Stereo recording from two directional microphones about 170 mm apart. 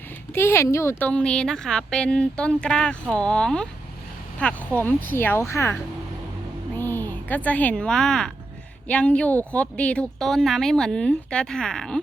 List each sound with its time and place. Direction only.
0.3 s a woman's voice: 15° left (ahead or behind)